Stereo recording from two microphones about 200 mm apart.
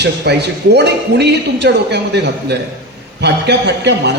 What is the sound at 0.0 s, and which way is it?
A man's voice, 55° right (ahead or behind).